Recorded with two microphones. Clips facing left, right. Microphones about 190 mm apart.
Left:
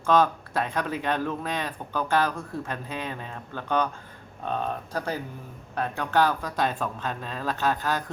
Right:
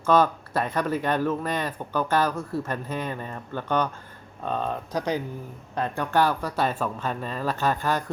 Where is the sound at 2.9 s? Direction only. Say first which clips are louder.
Right 3 dB; 10° left (ahead or behind).